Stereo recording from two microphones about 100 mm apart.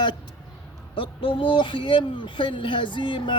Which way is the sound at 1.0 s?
60° left (ahead or behind).